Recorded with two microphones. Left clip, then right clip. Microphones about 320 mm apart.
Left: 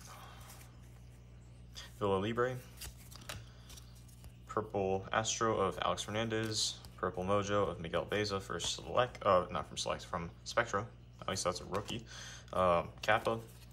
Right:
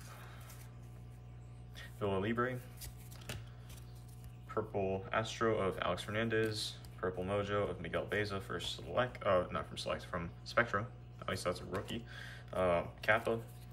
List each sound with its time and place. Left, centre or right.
1.8 s speech: centre
5.1 s speech: centre